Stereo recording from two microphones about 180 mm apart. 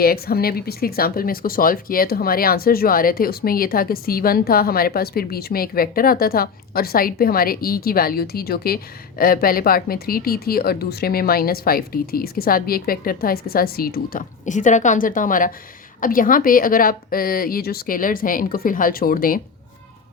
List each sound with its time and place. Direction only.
0.0 s a woman's voice: 55° left (ahead or behind)